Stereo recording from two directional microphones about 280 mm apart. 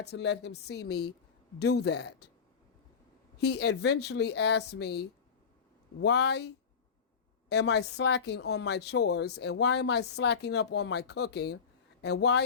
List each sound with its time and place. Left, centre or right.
0.0 s speech: left
3.3 s speech: left
7.5 s speech: left